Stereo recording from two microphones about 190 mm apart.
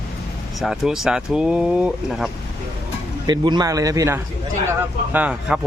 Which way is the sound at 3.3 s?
20° right (ahead or behind).